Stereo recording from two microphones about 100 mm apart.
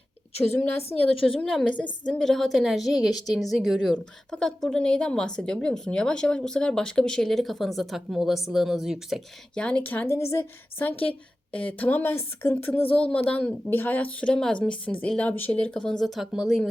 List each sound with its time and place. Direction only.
0.5 s a woman's voice: 20° left (ahead or behind)
0.8 s a woman's voice: 75° left (ahead or behind)
1.5 s speech: 5° left (ahead or behind)
9.6 s a woman's voice: 10° left (ahead or behind)
12.9 s a woman's voice: 10° left (ahead or behind)
13.7 s a woman's voice: 20° left (ahead or behind); by 16.6 s centre (ahead or behind)